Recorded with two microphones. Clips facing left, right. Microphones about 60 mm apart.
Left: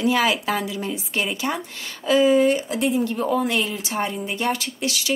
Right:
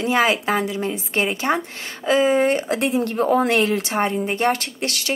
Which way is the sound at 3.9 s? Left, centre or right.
Right.